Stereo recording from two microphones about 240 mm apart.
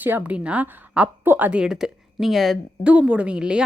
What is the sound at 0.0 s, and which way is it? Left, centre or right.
A woman's voice, centre.